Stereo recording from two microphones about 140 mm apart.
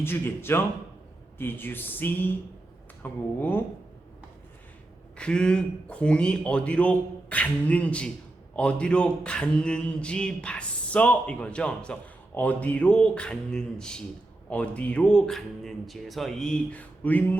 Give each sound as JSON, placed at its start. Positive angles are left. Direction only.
{"t": 0.0, "sound": "speech", "side_deg": 15}
{"t": 5.1, "sound": "speech", "side_deg": 5}